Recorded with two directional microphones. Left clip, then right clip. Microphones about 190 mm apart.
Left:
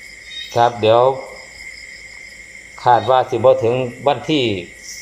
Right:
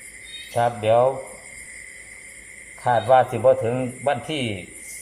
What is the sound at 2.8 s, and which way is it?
Speech, 15° left (ahead or behind).